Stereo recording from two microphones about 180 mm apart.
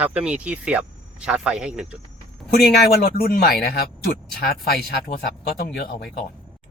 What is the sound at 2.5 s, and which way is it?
Speech, 55° left (ahead or behind).